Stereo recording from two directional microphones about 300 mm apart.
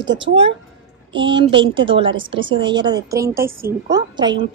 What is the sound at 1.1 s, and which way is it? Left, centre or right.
Speech, centre.